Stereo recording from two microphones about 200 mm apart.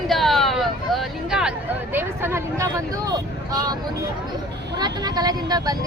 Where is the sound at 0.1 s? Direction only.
Centre (ahead or behind); by 3.8 s 20° right (ahead or behind).